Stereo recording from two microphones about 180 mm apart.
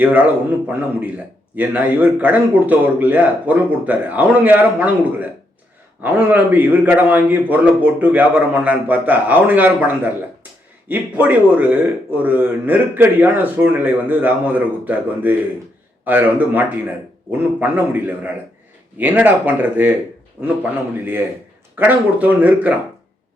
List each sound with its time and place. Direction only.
0.0 s speech: 10° right (ahead or behind)
1.5 s speech: 10° right (ahead or behind)